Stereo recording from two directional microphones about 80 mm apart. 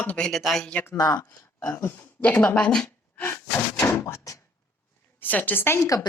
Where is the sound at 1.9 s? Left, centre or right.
Left.